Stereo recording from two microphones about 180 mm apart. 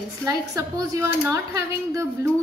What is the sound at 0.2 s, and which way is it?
A woman's voice, 20° right (ahead or behind).